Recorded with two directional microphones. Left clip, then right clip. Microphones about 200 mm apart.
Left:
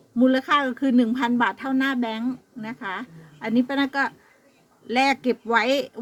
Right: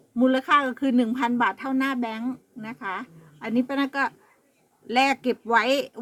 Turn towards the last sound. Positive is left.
turn(degrees=-10)  # may be behind; listen again after turning